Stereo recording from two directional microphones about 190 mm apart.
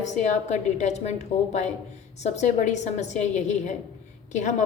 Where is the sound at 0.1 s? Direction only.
40° left (ahead or behind).